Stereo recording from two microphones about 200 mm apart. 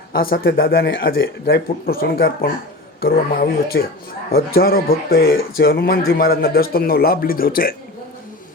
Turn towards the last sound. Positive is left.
turn(degrees=45)  # may be behind; listen again after turning